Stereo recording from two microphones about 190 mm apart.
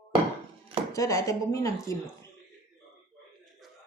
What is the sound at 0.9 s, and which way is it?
Speech, 15° left (ahead or behind).